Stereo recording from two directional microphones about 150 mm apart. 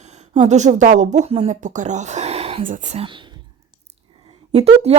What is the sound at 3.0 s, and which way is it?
Whispering, 35° right (ahead or behind).